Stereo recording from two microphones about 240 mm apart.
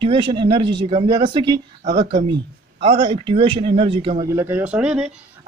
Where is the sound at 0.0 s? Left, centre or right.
Right.